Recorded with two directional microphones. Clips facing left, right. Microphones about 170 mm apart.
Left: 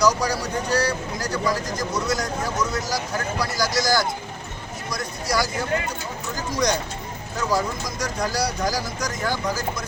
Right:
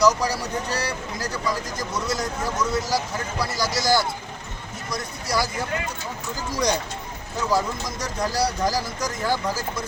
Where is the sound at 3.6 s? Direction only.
25° right (ahead or behind).